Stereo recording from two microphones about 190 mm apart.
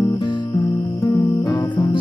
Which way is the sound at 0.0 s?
25° left (ahead or behind).